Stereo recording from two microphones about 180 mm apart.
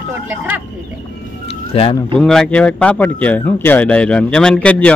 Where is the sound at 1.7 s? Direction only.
30° left (ahead or behind).